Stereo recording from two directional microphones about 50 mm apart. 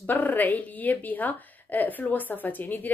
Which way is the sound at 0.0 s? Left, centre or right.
Left.